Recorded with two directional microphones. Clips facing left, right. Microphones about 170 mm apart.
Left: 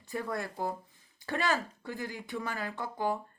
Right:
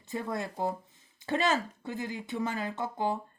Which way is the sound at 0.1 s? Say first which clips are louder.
Right 1 dB; 20° right (ahead or behind).